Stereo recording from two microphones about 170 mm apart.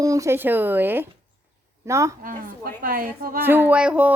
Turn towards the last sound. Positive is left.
turn(degrees=-10)  # may be behind; listen again after turning